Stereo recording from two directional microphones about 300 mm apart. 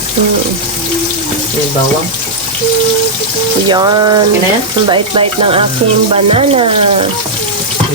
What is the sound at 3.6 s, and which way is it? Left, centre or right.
Speech, centre.